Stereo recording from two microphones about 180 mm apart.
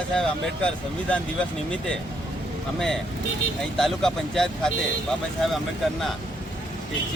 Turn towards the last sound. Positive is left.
turn(degrees=0)  # may be behind; listen again after turning